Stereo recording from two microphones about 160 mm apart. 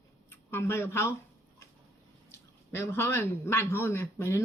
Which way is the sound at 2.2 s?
15° left (ahead or behind).